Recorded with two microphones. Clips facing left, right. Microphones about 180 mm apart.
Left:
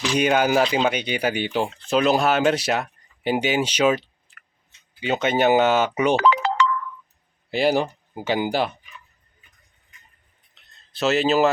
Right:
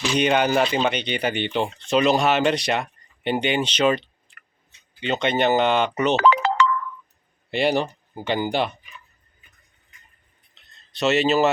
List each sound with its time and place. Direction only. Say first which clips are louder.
0.1 s speech: left 1 dB; 5° left (ahead or behind)
6.2 s music: right 1 dB; 50° right (ahead or behind)
7.5 s speech: left 1 dB; 5° left (ahead or behind)
10.9 s speech: even; centre (ahead or behind)